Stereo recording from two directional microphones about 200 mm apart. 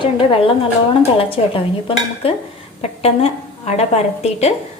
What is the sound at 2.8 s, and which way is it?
A woman's voice, 30° left (ahead or behind).